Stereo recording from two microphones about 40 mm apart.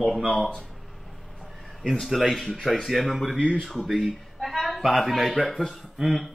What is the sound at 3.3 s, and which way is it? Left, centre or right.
Speech, left.